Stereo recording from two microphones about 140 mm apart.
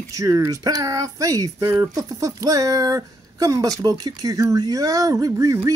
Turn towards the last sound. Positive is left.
turn(degrees=-25)  # may be behind; listen again after turning